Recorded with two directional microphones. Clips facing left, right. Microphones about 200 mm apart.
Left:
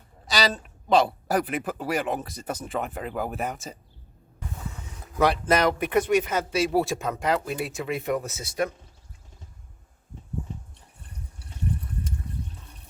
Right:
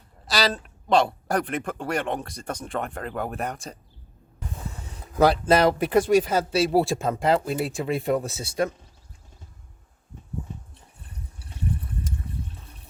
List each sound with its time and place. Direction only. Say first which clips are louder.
0.3 s speech: right 1 dB; centre (ahead or behind)
5.2 s speech: right 3 dB; 30° right (ahead or behind)